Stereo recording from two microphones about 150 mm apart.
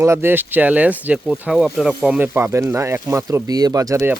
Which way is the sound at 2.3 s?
20° right (ahead or behind).